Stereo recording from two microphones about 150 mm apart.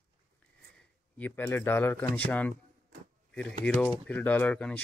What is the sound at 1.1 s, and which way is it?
Speech, 10° left (ahead or behind).